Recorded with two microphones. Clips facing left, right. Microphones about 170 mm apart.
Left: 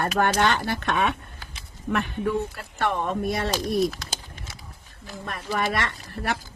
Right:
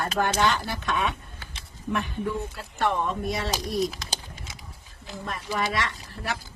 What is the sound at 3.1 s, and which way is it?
Speech, 55° left (ahead or behind).